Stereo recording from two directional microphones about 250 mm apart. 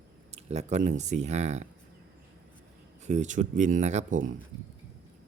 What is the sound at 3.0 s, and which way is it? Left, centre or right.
Speech, right.